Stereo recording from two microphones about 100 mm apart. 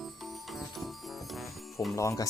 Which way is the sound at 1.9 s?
30° left (ahead or behind).